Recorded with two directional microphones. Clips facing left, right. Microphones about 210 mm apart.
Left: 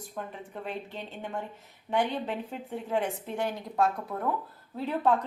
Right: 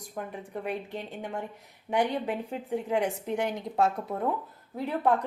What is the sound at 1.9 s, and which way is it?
A woman's voice, 15° right (ahead or behind).